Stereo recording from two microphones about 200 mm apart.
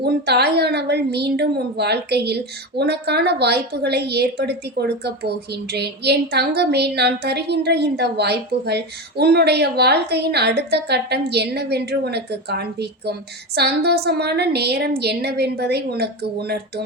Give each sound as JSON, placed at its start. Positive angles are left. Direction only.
{"t": 0.0, "sound": "a woman's voice", "side_deg": -55}